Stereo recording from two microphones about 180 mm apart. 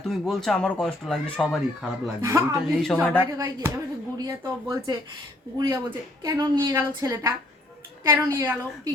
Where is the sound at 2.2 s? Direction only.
15° right (ahead or behind).